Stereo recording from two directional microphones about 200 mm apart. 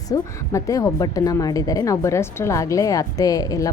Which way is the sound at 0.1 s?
15° left (ahead or behind).